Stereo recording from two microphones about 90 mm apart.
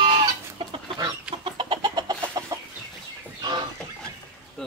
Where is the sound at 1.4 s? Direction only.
70° right (ahead or behind); by 2.5 s 45° right (ahead or behind).